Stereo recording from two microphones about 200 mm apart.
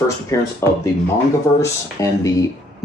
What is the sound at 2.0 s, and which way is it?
Speech, 15° left (ahead or behind).